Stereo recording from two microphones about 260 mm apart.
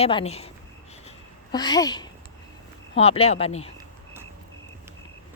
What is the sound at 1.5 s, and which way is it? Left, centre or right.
A woman's voice, centre.